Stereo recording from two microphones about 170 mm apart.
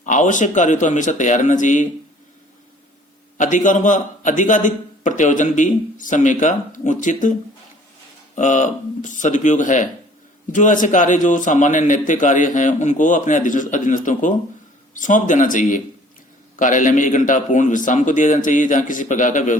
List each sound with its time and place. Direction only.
0.0 s a man's voice: 45° left (ahead or behind)
3.3 s a man's voice: 50° left (ahead or behind)
8.4 s a man's voice: 45° left (ahead or behind)